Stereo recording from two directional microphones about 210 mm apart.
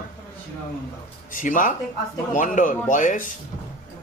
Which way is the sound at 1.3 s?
40° left (ahead or behind).